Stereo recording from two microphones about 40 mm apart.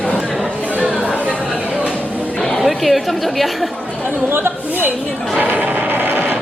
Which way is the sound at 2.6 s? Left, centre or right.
Centre.